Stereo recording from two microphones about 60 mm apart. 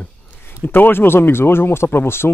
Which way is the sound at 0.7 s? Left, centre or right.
Left.